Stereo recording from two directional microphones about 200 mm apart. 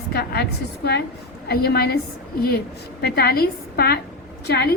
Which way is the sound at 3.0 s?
50° left (ahead or behind).